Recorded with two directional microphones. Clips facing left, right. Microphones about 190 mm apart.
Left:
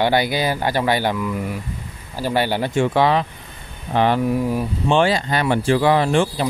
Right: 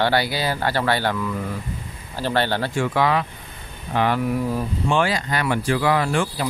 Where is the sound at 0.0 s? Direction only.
15° left (ahead or behind).